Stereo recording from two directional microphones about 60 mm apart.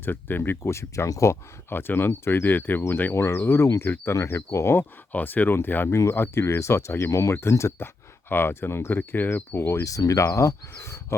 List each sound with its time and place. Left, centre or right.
0.0 s speech: left
0.6 s speech: left
1.7 s speech: left
4.1 s speech: left
5.1 s speech: left
5.9 s speech: left
6.1 s speech: left
7.1 s speech: left
7.8 s speech: left
9.8 s speech: left
10.2 s speech: left